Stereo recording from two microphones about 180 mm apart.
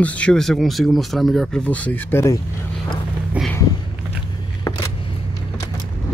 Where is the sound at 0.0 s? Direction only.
5° left (ahead or behind).